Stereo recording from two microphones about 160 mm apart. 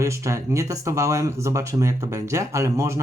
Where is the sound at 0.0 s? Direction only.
20° right (ahead or behind).